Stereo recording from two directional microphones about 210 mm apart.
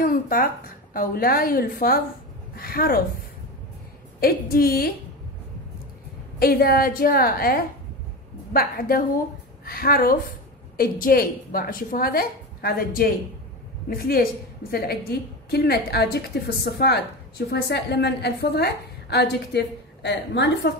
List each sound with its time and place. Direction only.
0.0 s a sound: 45° left (ahead or behind)
0.9 s a woman's voice: 45° left (ahead or behind)
4.2 s a woman's voice: 45° left (ahead or behind)
6.4 s a woman's voice: 45° left (ahead or behind)